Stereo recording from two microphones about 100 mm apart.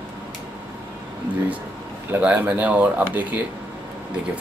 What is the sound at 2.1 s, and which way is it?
Speech, 15° right (ahead or behind).